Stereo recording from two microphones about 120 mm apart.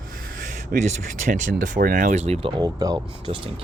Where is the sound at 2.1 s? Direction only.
60° right (ahead or behind).